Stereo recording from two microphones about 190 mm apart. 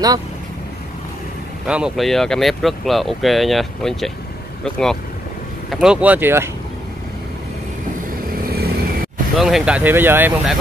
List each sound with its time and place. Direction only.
1.7 s speech: centre (ahead or behind)
8.5 s vehicle: 55° right (ahead or behind)
9.4 s speech: 5° right (ahead or behind)